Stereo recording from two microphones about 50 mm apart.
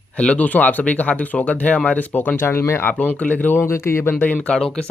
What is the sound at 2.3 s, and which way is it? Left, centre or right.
Speech, left.